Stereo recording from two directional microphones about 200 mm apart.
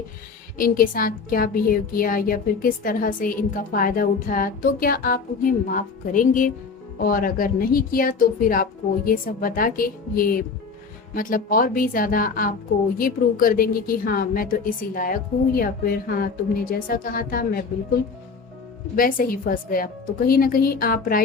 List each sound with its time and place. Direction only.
0.6 s a woman's voice: 45° left (ahead or behind)